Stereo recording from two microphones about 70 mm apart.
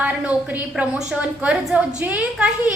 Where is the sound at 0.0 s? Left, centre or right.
Right.